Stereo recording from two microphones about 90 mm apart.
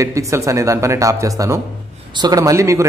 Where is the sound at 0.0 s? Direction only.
35° right (ahead or behind).